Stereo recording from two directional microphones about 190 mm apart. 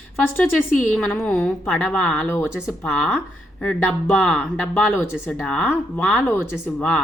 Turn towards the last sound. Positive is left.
turn(degrees=10)  # may be behind; listen again after turning